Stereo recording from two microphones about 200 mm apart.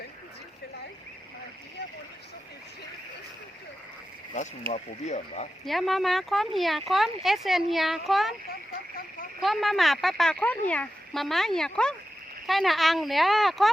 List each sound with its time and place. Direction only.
4.7 s speech: 35° left (ahead or behind)
5.6 s speech: centre (ahead or behind)
9.4 s speech: centre (ahead or behind)